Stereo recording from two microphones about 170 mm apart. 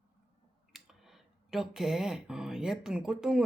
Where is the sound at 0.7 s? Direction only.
Centre (ahead or behind).